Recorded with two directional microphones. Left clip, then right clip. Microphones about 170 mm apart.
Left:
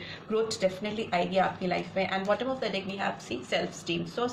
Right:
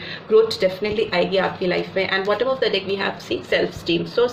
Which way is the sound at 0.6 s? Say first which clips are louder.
Right 10 dB; 45° right (ahead or behind).